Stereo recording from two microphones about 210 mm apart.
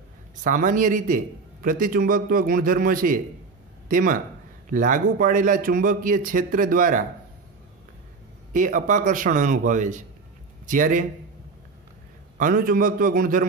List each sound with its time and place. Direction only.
0.4 s a man's voice: 40° right (ahead or behind)
8.5 s a man's voice: 40° right (ahead or behind)
12.4 s a man's voice: 40° right (ahead or behind)